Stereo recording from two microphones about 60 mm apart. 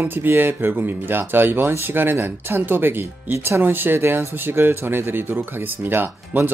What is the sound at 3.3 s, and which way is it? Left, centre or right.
Speech, right.